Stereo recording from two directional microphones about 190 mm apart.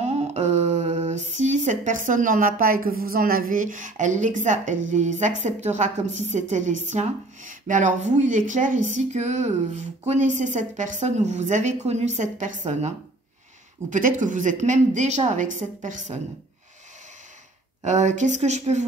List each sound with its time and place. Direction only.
0.0 s a woman's voice: 35° right (ahead or behind)
17.8 s a woman's voice: 40° right (ahead or behind)